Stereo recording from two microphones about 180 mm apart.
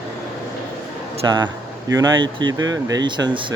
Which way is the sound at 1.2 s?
25° right (ahead or behind).